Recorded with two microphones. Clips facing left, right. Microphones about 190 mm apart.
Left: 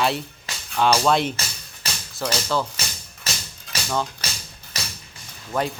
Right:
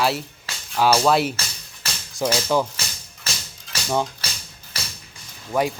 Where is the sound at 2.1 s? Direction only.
15° right (ahead or behind).